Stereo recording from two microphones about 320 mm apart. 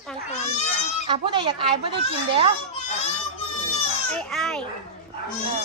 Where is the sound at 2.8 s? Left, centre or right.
Centre.